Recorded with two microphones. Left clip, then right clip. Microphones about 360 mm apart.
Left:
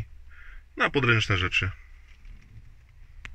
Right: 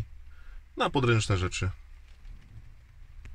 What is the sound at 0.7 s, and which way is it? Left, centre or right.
Speech, centre.